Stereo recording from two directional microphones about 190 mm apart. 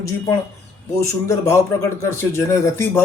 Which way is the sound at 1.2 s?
15° left (ahead or behind).